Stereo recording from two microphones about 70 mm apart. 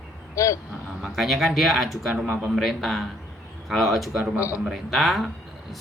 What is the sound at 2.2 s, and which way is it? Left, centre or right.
Speech, right.